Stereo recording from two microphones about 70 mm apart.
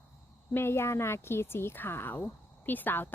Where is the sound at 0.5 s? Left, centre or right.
Left.